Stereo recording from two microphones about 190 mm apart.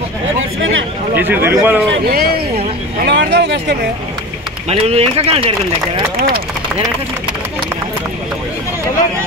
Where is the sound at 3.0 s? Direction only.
65° right (ahead or behind).